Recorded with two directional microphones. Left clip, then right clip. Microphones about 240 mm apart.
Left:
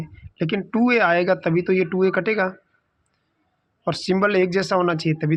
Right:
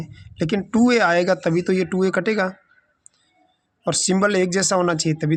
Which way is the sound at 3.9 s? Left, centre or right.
Centre.